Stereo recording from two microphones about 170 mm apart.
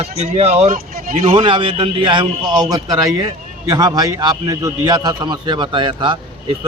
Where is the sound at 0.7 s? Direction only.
55° right (ahead or behind).